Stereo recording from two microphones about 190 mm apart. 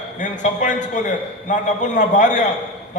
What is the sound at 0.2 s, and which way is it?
A man's voice, 40° left (ahead or behind).